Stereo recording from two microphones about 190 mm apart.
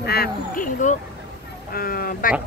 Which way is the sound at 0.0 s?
55° left (ahead or behind).